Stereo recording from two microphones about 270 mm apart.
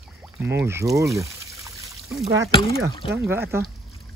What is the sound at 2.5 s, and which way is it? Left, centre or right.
Speech, centre.